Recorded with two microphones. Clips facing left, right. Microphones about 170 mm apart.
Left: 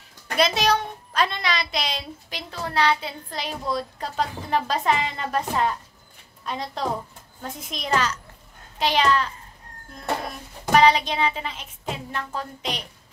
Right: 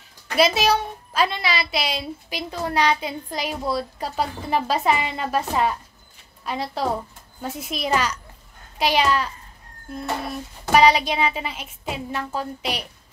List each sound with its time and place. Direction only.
0.4 s a woman's voice: 5° right (ahead or behind)
10.7 s a woman's voice: 10° right (ahead or behind)